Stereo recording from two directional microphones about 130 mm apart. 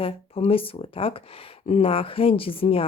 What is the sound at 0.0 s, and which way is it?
Speech, 45° left (ahead or behind).